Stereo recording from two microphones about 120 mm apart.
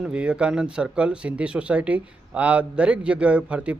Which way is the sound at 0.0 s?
10° right (ahead or behind).